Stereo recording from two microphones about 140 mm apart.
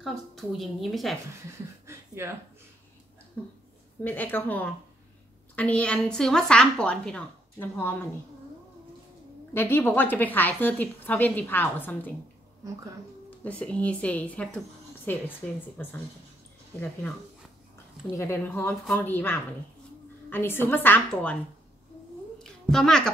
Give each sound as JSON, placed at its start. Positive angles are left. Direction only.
{"t": 0.0, "sound": "a woman's voice", "side_deg": 0}
{"t": 1.9, "sound": "a sound", "side_deg": -20}
{"t": 4.0, "sound": "a woman's voice", "side_deg": 15}
{"t": 9.5, "sound": "a woman's voice", "side_deg": 15}
{"t": 13.4, "sound": "a woman's voice", "side_deg": 10}
{"t": 18.1, "sound": "a woman's voice", "side_deg": 20}
{"t": 22.4, "sound": "a sound", "side_deg": 5}